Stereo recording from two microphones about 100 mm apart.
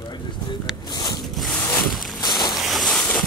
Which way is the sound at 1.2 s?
Centre (ahead or behind).